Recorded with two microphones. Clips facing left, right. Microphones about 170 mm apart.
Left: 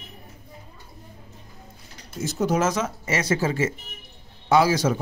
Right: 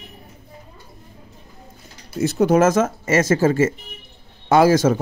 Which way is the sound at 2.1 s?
65° right (ahead or behind).